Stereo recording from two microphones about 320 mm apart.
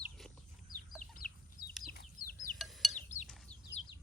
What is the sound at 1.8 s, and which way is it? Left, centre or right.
Chicken, left.